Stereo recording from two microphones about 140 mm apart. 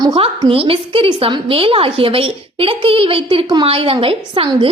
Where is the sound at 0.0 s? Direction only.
35° right (ahead or behind).